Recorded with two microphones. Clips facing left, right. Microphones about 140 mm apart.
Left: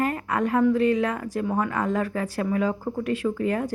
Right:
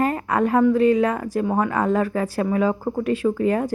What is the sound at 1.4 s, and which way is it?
Speech, 85° right.